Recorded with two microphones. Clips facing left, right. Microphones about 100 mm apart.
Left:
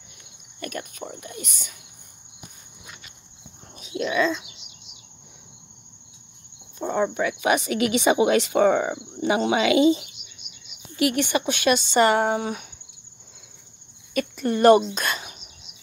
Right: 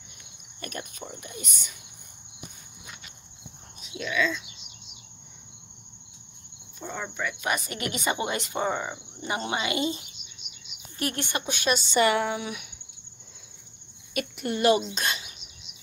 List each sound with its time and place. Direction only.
0.6 s speech: 90° left
3.9 s speech: 45° left (ahead or behind)
6.8 s speech: 60° left (ahead or behind)
12.0 s speech: 40° left (ahead or behind)
14.1 s speech: 40° left (ahead or behind)
15.0 s bird: 50° left (ahead or behind)